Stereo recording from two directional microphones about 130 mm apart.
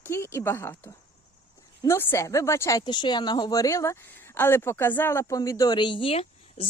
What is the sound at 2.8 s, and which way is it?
Speech, 35° left (ahead or behind).